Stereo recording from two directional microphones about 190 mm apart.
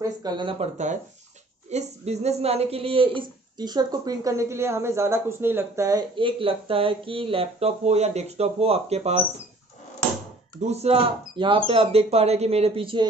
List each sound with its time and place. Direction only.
0.2 s speech: 25° right (ahead or behind)
10.6 s speech: 35° right (ahead or behind)